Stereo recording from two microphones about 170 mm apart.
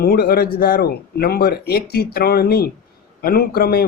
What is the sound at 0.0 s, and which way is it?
Speech, 65° left (ahead or behind).